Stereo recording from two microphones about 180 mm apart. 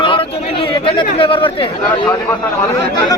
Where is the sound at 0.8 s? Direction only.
30° left (ahead or behind).